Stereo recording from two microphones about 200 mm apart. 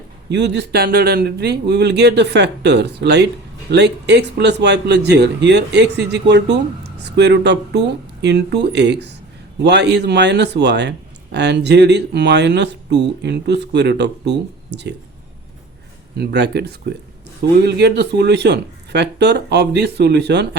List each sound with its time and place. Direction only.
0.3 s speech: 60° right (ahead or behind)
16.1 s speech: 55° right (ahead or behind)